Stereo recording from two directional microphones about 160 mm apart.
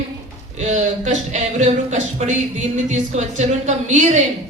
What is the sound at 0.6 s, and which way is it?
Speech, 45° right (ahead or behind).